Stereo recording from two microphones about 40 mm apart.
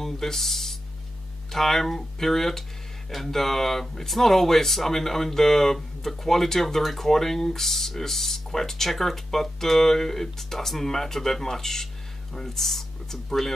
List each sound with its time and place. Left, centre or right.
0.0 s speech: centre